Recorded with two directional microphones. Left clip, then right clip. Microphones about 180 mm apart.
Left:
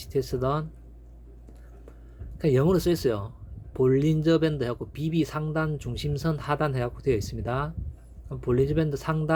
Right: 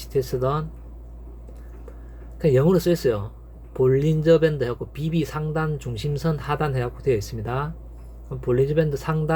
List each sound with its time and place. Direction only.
0.0 s speech: 25° left (ahead or behind)
2.4 s speech: 30° left (ahead or behind)